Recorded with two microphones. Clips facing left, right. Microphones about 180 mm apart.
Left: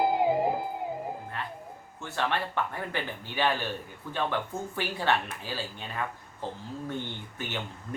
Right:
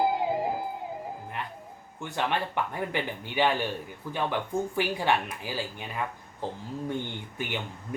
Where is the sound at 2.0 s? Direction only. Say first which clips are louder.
Right 1 dB; 15° right (ahead or behind).